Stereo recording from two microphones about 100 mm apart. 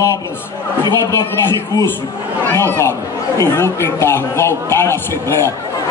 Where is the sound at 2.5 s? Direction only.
25° left (ahead or behind).